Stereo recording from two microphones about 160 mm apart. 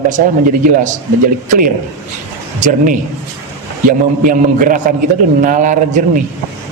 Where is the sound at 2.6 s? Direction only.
45° right (ahead or behind).